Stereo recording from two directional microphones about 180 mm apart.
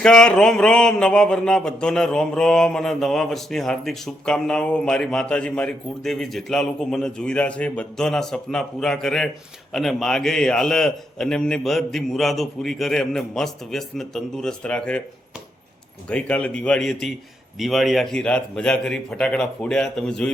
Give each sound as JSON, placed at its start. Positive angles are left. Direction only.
{"t": 0.0, "sound": "speech", "side_deg": 5}
{"t": 16.0, "sound": "speech", "side_deg": 5}